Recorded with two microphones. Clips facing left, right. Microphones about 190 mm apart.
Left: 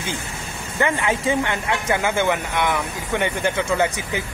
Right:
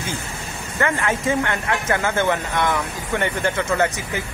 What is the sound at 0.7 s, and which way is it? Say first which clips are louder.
Speech: left 1 dB; 15° left (ahead or behind).